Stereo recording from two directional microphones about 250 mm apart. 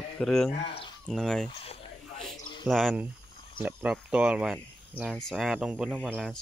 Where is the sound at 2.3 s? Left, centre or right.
Left.